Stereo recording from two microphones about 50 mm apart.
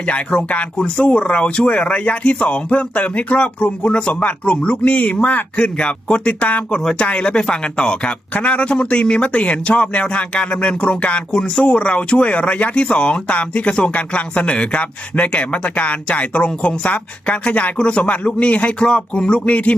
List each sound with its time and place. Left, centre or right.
0.1 s speech: centre